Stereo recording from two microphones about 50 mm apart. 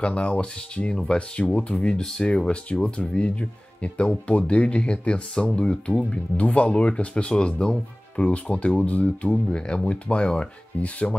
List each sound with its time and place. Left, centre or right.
0.0 s speech: left